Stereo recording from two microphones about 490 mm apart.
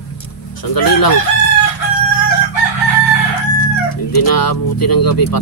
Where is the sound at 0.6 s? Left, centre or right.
Left.